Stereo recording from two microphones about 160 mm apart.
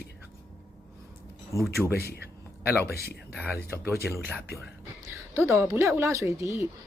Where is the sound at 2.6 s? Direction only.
10° right (ahead or behind).